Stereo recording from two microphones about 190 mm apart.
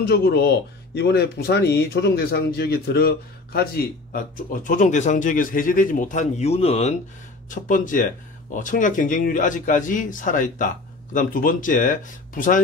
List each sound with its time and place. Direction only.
0.0 s speech: 55° left (ahead or behind)